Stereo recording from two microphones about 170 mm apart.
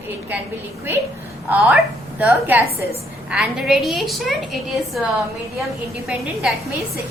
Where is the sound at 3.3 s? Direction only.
Centre (ahead or behind).